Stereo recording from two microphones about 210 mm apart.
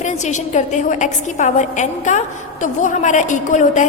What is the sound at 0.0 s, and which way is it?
A woman's voice, 35° left (ahead or behind).